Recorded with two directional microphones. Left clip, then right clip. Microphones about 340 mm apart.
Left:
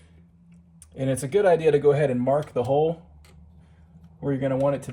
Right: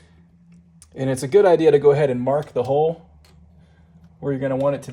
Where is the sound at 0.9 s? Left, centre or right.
Right.